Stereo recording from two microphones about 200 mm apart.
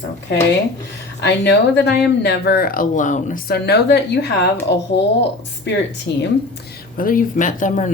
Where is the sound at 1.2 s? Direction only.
60° left (ahead or behind).